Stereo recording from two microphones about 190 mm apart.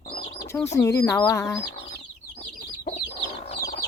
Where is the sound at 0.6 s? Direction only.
15° left (ahead or behind).